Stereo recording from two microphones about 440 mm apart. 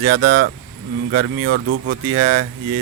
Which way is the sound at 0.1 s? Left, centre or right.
Right.